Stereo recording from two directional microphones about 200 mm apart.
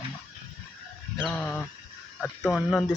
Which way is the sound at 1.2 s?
5° left (ahead or behind).